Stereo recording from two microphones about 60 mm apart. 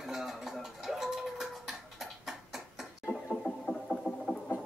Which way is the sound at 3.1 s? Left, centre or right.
Centre.